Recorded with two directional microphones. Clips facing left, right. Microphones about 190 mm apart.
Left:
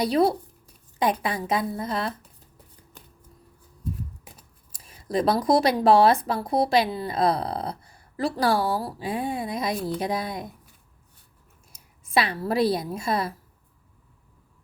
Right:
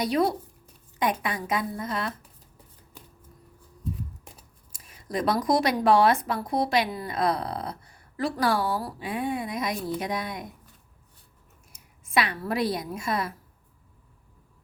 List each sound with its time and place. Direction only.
0.0 s speech: 30° left (ahead or behind)
4.7 s speech: 30° left (ahead or behind)
11.7 s a woman's voice: 30° left (ahead or behind)